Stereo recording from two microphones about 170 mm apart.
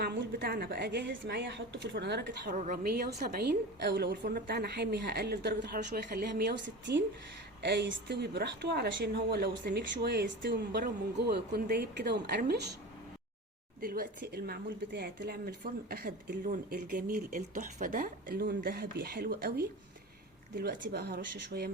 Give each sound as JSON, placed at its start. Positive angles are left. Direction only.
{"t": 0.0, "sound": "a woman's voice", "side_deg": -80}
{"t": 2.5, "sound": "a woman's voice", "side_deg": -50}
{"t": 10.5, "sound": "a woman's voice", "side_deg": -75}
{"t": 13.8, "sound": "a woman's voice", "side_deg": -60}